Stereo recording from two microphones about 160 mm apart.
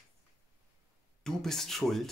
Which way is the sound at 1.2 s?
5° left (ahead or behind).